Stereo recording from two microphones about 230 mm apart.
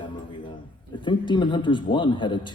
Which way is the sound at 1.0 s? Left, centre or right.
Left.